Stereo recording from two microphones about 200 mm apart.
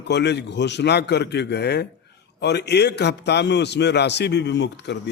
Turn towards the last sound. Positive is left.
turn(degrees=60)  # may be behind; listen again after turning